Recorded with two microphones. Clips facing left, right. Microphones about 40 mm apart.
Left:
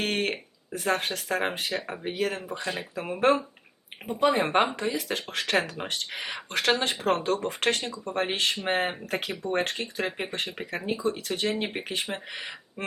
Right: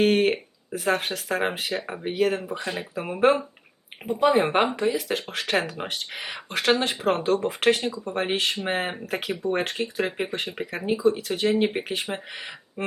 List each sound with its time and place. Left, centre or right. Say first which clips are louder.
0.0 s speech: right 8 dB; centre